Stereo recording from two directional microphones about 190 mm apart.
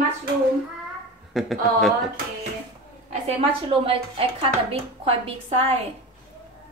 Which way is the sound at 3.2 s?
30° right (ahead or behind).